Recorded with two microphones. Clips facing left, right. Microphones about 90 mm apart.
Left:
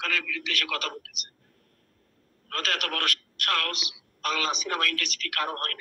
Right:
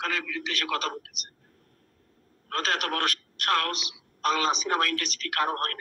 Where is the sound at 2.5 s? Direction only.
25° right (ahead or behind).